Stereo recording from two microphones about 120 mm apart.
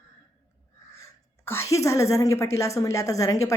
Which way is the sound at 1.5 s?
25° left (ahead or behind).